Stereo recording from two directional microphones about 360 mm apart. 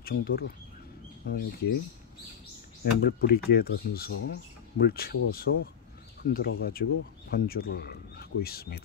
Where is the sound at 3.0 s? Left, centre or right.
Left.